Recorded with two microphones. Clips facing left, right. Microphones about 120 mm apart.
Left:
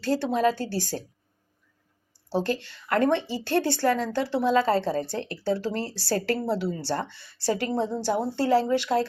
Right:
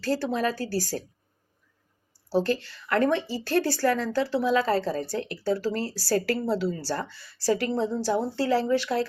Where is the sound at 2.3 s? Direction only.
20° left (ahead or behind).